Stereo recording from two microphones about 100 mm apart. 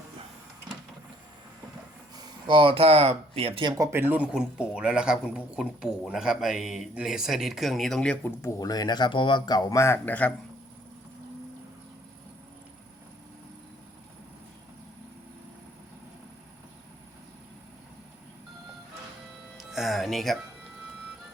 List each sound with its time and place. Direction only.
2.5 s speech: 60° right (ahead or behind)
3.9 s speech: 20° right (ahead or behind); by 8.3 s 10° left (ahead or behind)
8.4 s a man's voice: 35° left (ahead or behind); by 10.3 s 15° left (ahead or behind)
19.5 s music: centre (ahead or behind)